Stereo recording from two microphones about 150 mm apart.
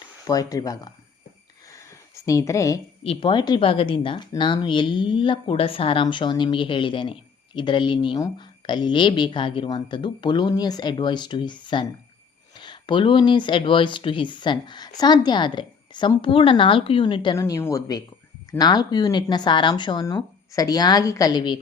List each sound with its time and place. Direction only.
0.3 s speech: 25° left (ahead or behind)
1.7 s a sound: 20° left (ahead or behind)
3.0 s speech: 40° left (ahead or behind)
17.3 s speech: 20° left (ahead or behind)